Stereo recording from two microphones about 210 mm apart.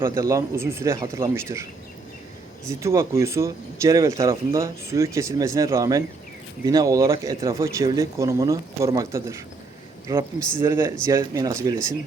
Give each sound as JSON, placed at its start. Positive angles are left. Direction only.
{"t": 0.2, "sound": "speech", "side_deg": -15}
{"t": 2.6, "sound": "speech", "side_deg": -15}
{"t": 10.6, "sound": "speech", "side_deg": -15}